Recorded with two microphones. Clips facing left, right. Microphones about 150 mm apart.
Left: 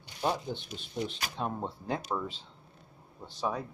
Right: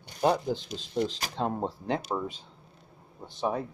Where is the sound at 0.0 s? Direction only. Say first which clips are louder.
Right 6 dB; 45° right (ahead or behind).